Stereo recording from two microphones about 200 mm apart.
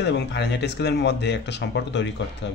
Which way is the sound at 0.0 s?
60° left (ahead or behind).